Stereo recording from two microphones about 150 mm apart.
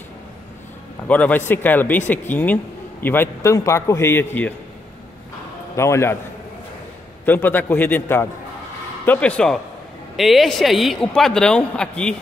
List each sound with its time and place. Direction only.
1.0 s speech: 10° left (ahead or behind)
5.8 s speech: 20° left (ahead or behind)
7.2 s speech: 10° left (ahead or behind)